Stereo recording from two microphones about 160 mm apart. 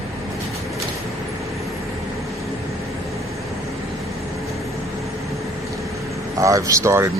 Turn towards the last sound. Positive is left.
turn(degrees=-20)  # may be behind; listen again after turning